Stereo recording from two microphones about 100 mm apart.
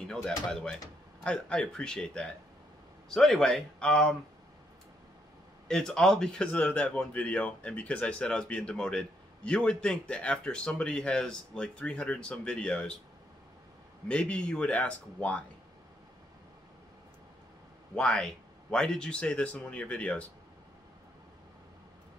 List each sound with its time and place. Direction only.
0.1 s a man's voice: 5° left (ahead or behind)
5.7 s speech: 5° left (ahead or behind)
14.0 s speech: 10° left (ahead or behind)
17.9 s speech: 5° left (ahead or behind)